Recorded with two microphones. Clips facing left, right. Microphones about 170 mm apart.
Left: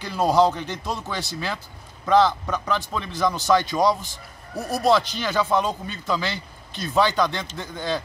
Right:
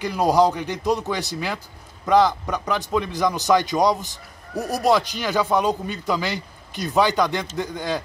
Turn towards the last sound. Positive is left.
turn(degrees=-15)  # may be behind; listen again after turning